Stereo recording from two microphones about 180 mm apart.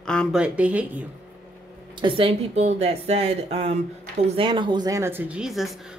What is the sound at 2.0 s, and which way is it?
Speech, 30° right (ahead or behind).